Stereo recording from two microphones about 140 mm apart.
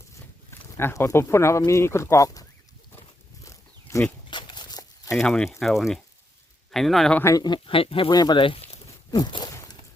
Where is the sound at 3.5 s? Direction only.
20° left (ahead or behind).